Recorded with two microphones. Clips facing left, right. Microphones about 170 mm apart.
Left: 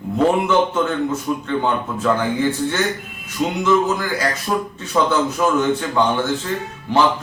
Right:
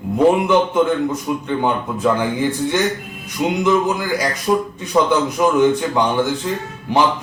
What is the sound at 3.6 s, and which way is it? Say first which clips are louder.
A man's voice: even; 15° right (ahead or behind).